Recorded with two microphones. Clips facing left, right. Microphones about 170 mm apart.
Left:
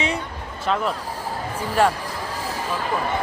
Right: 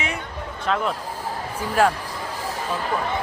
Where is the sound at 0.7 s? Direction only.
Centre (ahead or behind).